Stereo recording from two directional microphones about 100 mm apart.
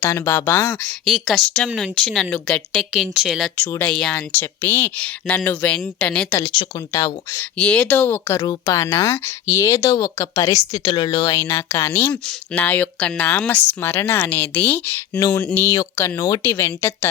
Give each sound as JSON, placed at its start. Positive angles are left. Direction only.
{"t": 0.0, "sound": "a woman's voice", "side_deg": 25}
{"t": 1.0, "sound": "speech", "side_deg": 0}
{"t": 3.6, "sound": "a woman's voice", "side_deg": 20}
{"t": 3.8, "sound": "speech", "side_deg": 5}
{"t": 4.1, "sound": "speech", "side_deg": 20}
{"t": 6.7, "sound": "speech", "side_deg": 35}
{"t": 7.3, "sound": "speech", "side_deg": 10}
{"t": 10.7, "sound": "speech", "side_deg": 50}
{"t": 11.3, "sound": "a woman's voice", "side_deg": 25}
{"t": 12.1, "sound": "speech", "side_deg": 5}
{"t": 16.0, "sound": "speech", "side_deg": 30}
{"t": 16.4, "sound": "a woman's voice", "side_deg": 25}